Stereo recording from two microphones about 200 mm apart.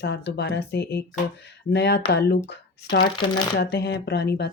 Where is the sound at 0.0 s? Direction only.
55° left (ahead or behind).